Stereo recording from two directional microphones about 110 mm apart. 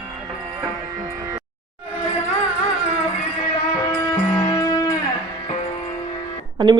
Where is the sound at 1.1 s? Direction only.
30° right (ahead or behind).